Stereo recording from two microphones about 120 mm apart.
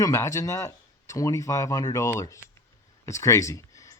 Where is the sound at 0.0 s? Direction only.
25° left (ahead or behind).